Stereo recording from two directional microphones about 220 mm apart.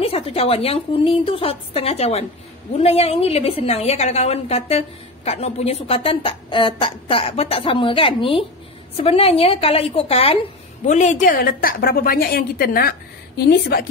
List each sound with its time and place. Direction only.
0.0 s a woman's voice: 25° left (ahead or behind); by 13.8 s 40° left (ahead or behind)